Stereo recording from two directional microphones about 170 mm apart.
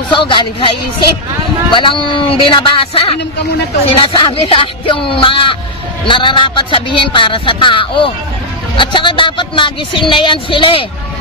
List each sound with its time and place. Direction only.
0.1 s speech: 30° left (ahead or behind)
4.0 s fowl: 30° left (ahead or behind)
6.0 s speech: 30° left (ahead or behind)